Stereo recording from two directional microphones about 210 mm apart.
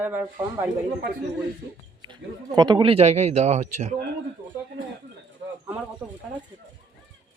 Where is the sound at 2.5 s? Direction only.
20° right (ahead or behind).